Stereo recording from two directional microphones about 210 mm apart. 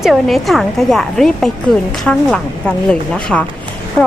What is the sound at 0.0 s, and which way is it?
Speech, centre (ahead or behind).